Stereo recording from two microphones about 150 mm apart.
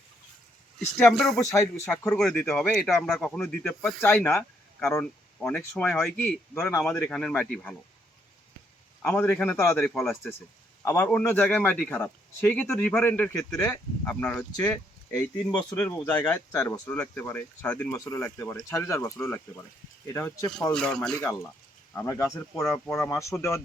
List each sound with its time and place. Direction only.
0.9 s speech: 5° left (ahead or behind)
9.0 s speech: 10° left (ahead or behind)
14.5 s speech: 25° left (ahead or behind)
15.5 s speech: 15° left (ahead or behind)
20.7 s speech: 5° left (ahead or behind)
21.9 s speech: 15° left (ahead or behind)